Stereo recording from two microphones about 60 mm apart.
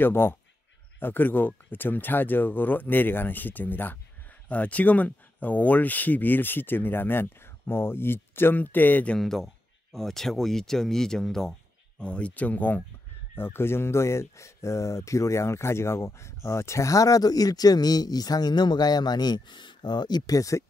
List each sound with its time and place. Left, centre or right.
0.0 s speech: left
9.2 s speech: centre
12.0 s speech: centre
13.4 s speech: left
20.2 s speech: left